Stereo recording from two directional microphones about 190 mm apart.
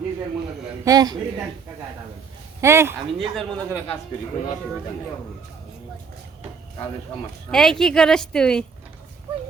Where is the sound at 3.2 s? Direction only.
5° left (ahead or behind).